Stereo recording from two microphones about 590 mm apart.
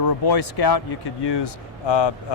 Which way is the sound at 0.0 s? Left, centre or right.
Left.